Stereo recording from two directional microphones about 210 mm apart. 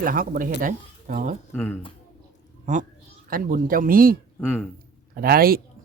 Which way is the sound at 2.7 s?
35° right (ahead or behind).